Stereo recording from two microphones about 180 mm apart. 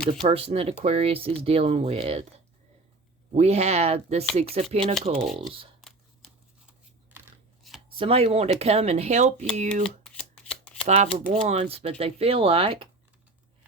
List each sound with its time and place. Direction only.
0.0 s speech: 35° right (ahead or behind)
3.3 s speech: 35° right (ahead or behind)
5.2 s speech: centre (ahead or behind)
5.8 s a sound: centre (ahead or behind)
7.9 s speech: 30° right (ahead or behind)
9.8 s shuffling cards: 5° left (ahead or behind)
10.8 s speech: 40° right (ahead or behind)